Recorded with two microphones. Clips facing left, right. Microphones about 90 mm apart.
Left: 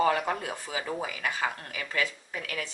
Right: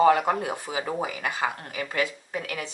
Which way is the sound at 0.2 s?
25° right (ahead or behind).